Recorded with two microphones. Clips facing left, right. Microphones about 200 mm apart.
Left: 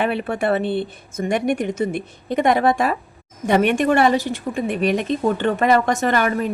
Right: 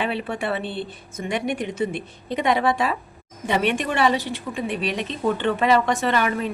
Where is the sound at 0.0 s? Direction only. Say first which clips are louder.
Left 5 dB; 50° left (ahead or behind).